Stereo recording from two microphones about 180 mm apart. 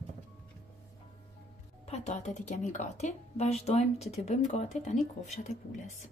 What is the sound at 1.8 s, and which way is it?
A woman's voice, 35° left (ahead or behind).